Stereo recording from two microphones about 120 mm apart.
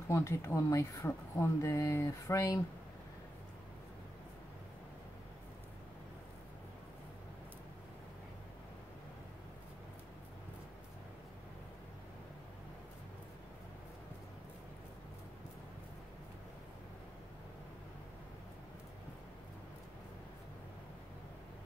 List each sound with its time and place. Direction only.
0.1 s speech: 25° left (ahead or behind)